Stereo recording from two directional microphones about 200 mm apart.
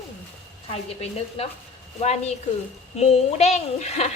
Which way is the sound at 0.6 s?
30° left (ahead or behind).